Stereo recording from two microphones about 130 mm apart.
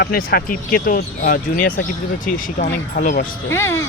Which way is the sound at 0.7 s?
90° left.